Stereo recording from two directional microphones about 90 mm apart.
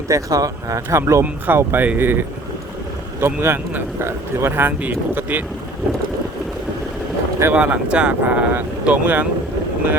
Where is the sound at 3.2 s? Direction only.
25° right (ahead or behind).